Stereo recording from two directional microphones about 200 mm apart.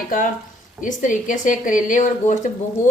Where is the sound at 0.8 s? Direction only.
40° left (ahead or behind).